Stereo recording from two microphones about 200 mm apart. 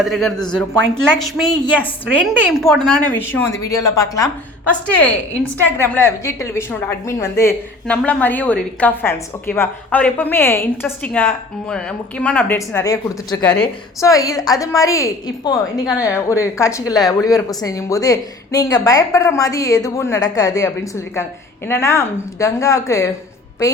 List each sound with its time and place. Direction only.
0.0 s a woman's voice: centre (ahead or behind); by 4.3 s 15° left (ahead or behind)
4.9 s a woman's voice: 5° left (ahead or behind)